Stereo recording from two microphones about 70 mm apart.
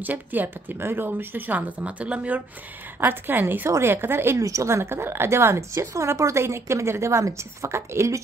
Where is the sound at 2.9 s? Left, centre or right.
Right.